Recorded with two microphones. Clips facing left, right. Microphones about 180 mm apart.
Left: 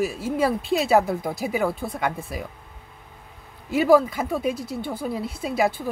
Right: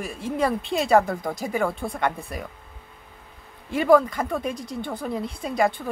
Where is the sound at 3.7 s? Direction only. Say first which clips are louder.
Left 1 dB; 5° left (ahead or behind).